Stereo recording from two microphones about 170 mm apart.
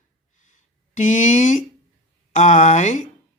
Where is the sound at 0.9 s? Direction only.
45° left (ahead or behind).